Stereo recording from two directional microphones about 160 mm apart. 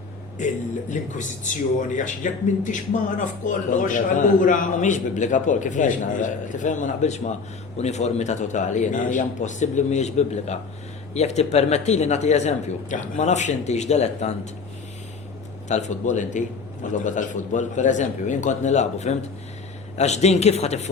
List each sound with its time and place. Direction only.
0.3 s a man's voice: 50° left (ahead or behind)
15.7 s a man's voice: 50° left (ahead or behind)